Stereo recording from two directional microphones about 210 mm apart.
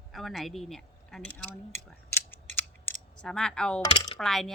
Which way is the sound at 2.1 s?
10° left (ahead or behind).